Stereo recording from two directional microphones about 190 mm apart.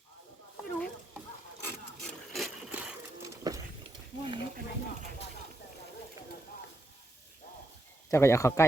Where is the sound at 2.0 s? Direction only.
Centre (ahead or behind).